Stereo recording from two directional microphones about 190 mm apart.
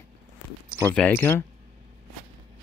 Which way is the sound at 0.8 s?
10° left (ahead or behind).